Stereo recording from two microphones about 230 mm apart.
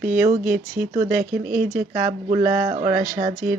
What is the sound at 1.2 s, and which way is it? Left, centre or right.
Speech, right.